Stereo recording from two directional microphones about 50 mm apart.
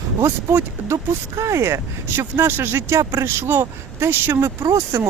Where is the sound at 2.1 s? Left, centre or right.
Right.